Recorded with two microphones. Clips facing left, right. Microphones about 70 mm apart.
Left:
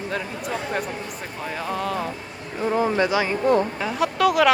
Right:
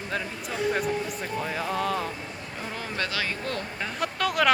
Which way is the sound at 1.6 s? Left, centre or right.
Centre.